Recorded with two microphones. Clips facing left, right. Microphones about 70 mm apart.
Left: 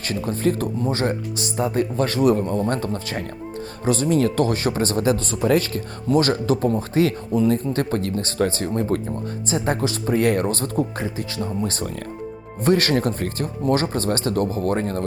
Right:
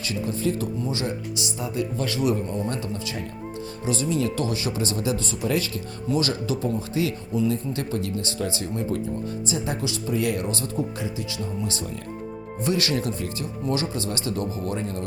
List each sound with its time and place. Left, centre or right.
0.0 s speech: left